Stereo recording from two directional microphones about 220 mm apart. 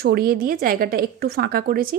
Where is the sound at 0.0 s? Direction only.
45° right (ahead or behind).